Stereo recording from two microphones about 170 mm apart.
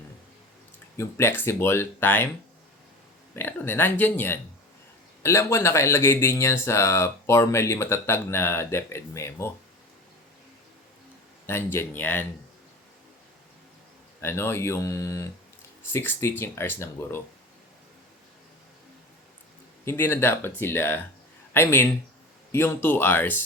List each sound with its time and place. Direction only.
0.9 s speech: 15° left (ahead or behind)
3.3 s speech: 10° left (ahead or behind)
11.4 s speech: 15° left (ahead or behind)
14.2 s speech: 15° left (ahead or behind)
19.8 s a man's voice: 15° left (ahead or behind)